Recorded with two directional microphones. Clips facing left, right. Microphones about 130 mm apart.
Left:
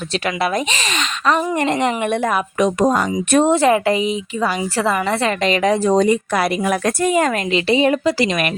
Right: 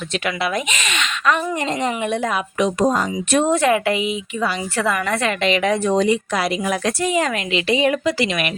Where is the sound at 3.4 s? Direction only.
30° left (ahead or behind).